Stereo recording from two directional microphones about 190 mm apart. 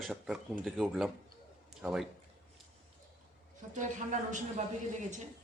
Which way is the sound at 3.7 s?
40° right (ahead or behind).